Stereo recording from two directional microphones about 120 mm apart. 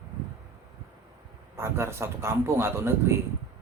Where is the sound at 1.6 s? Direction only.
20° right (ahead or behind).